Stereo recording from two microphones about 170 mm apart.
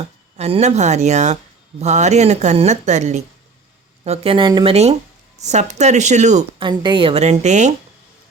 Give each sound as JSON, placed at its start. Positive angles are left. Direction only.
{"t": 0.3, "sound": "a woman's voice", "side_deg": -40}
{"t": 6.6, "sound": "a woman's voice", "side_deg": -30}